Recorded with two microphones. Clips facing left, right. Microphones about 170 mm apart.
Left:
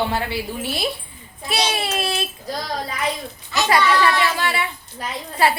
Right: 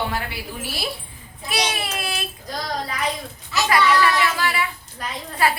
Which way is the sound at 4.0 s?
30° left (ahead or behind).